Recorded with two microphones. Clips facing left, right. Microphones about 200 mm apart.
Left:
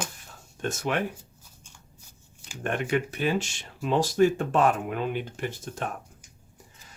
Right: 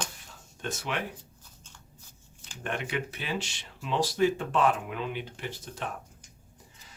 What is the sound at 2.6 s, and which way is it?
Speech, 45° left (ahead or behind).